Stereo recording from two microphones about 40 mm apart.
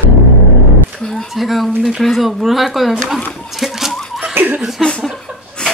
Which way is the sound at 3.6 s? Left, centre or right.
Centre.